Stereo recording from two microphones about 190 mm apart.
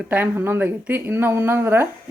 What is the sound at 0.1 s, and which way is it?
A woman's voice, 10° right (ahead or behind).